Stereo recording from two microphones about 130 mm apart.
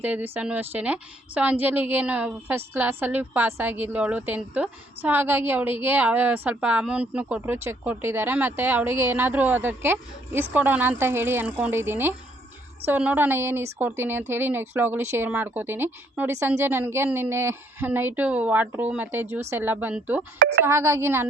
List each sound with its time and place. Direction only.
0.0 s a woman's voice: 15° right (ahead or behind)